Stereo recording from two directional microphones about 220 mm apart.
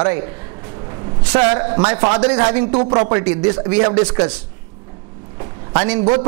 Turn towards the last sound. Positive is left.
turn(degrees=-25)  # may be behind; listen again after turning